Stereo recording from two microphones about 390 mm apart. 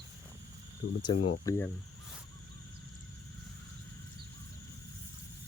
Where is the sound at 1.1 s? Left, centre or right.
Left.